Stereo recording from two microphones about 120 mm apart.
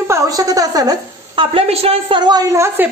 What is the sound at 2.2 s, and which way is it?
Speech, 35° right (ahead or behind).